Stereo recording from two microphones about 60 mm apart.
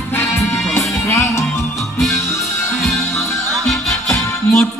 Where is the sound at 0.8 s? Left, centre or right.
Left.